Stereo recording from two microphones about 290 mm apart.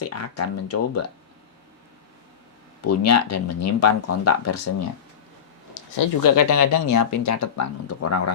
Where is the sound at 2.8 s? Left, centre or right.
Left.